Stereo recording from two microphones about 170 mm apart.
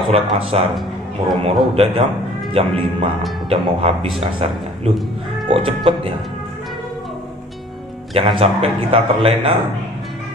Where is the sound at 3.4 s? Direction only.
35° right (ahead or behind).